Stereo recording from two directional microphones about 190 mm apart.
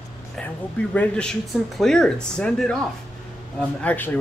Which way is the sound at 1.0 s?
5° left (ahead or behind).